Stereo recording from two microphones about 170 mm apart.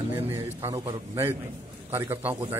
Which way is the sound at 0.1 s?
15° right (ahead or behind).